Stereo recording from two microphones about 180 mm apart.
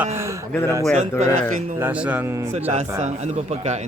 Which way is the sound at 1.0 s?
40° right (ahead or behind).